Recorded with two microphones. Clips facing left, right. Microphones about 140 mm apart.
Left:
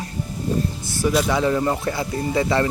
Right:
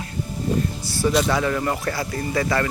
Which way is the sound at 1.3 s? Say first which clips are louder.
Left 2 dB; 20° left (ahead or behind).